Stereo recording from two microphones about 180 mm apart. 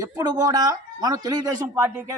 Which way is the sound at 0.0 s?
20° right (ahead or behind).